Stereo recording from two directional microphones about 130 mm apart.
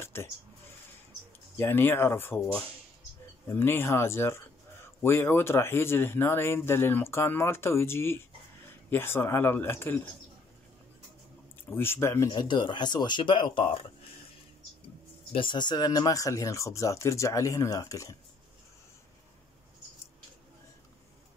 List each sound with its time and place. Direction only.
0.0 s speech: 20° left (ahead or behind)
1.6 s speech: 20° left (ahead or behind)
11.7 s speech: 15° left (ahead or behind)
12.3 s speech: 35° left (ahead or behind)
15.3 s speech: 40° left (ahead or behind)